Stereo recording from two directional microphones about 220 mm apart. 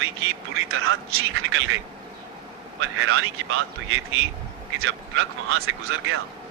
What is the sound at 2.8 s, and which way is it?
Speech, 65° right (ahead or behind).